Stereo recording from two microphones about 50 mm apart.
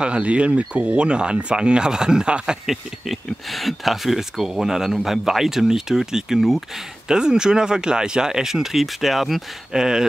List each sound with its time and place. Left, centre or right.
0.0 s speech: right
2.6 s speech: centre
9.8 s speech: centre